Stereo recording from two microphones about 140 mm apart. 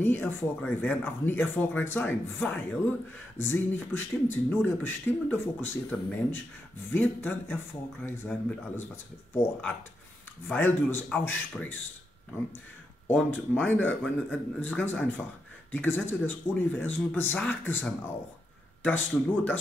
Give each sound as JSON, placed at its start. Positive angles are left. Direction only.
{"t": 0.0, "sound": "speech", "side_deg": 15}
{"t": 13.0, "sound": "speech", "side_deg": 10}